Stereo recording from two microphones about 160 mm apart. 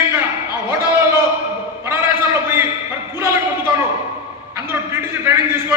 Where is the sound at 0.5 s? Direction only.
15° right (ahead or behind).